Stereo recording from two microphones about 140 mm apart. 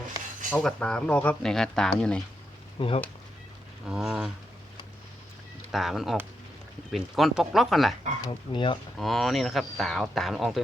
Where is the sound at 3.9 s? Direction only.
5° right (ahead or behind).